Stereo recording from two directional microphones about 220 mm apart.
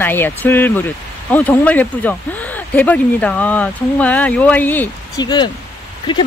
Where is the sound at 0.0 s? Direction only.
10° left (ahead or behind).